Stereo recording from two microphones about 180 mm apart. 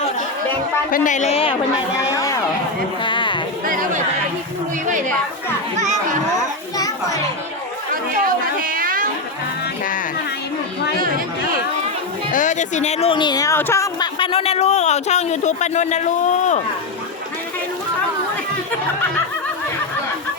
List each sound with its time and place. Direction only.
0.9 s speech: 45° left (ahead or behind)
2.0 s a sound: 15° left (ahead or behind)
3.0 s speech: 25° left (ahead or behind)
3.7 s speech: 50° right (ahead or behind)
6.7 s children playing: 20° left (ahead or behind)
8.2 s a sound: 50° right (ahead or behind)
12.3 s speech: 45° left (ahead or behind); by 14.1 s 15° left (ahead or behind)
14.2 s speech: 30° left (ahead or behind)